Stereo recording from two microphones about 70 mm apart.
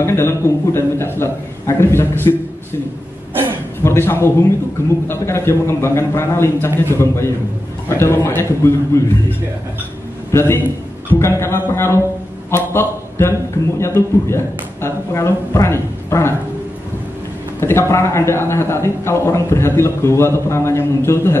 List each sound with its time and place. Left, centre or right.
0.0 s speech: left
3.8 s speech: left
10.3 s a man's voice: left
11.1 s a man's voice: left
17.6 s speech: left